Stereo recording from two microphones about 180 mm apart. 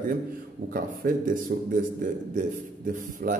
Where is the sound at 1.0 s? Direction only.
50° right (ahead or behind).